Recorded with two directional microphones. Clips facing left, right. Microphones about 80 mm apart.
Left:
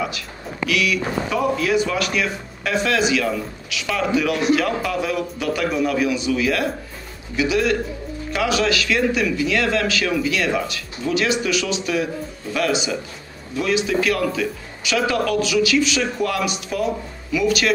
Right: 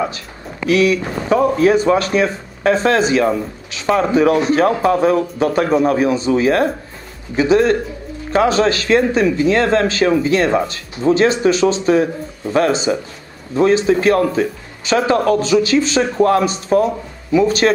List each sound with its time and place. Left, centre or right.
0.7 s speech: right